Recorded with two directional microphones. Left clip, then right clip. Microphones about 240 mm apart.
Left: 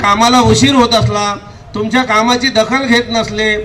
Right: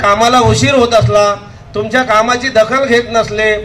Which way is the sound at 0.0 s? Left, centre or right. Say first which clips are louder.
Right 1 dB; left.